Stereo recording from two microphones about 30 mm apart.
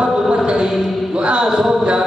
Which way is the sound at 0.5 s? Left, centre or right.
Right.